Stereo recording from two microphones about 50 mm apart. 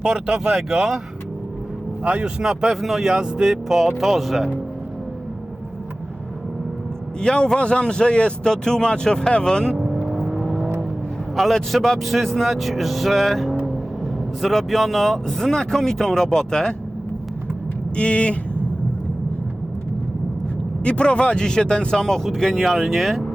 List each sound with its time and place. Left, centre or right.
0.0 s speech: centre
2.0 s speech: right
2.4 s speech: centre
7.2 s speech: centre
10.2 s vehicle: centre
11.5 s speech: centre
17.9 s vehicle: left
20.8 s speech: left; by 23.2 s centre